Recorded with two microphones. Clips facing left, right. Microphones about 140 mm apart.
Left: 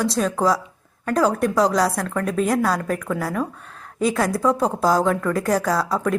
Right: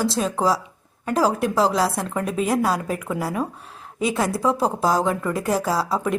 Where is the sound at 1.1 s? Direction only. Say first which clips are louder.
Left 1 dB; 5° right (ahead or behind).